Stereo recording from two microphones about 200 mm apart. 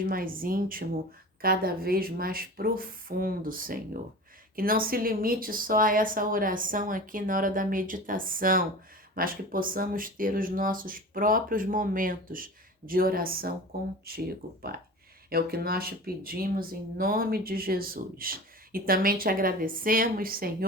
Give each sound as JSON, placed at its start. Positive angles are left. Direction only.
{"t": 0.0, "sound": "speech", "side_deg": -45}